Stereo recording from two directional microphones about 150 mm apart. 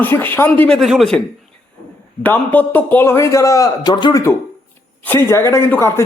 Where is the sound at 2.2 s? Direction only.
10° left (ahead or behind).